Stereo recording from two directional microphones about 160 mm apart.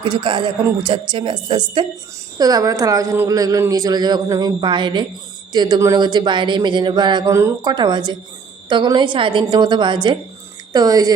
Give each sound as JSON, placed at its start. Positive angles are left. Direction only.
{"t": 0.0, "sound": "a woman's voice", "side_deg": -30}